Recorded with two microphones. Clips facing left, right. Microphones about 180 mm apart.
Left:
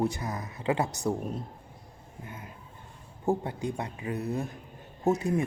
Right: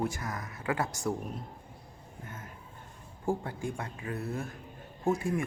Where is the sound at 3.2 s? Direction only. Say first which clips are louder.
Left 4 dB; 20° left (ahead or behind).